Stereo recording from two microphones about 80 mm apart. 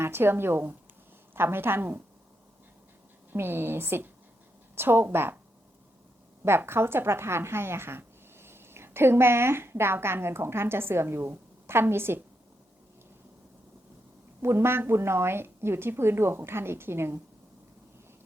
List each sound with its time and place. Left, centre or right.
0.0 s a woman's voice: right
3.3 s a woman's voice: right
6.4 s a woman's voice: right
14.4 s a woman's voice: right